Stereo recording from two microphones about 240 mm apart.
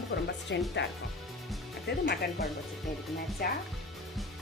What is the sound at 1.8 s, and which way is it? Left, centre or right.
Speech, left.